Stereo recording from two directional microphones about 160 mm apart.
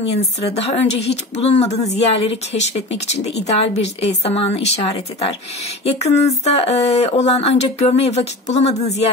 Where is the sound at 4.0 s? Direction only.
40° left (ahead or behind).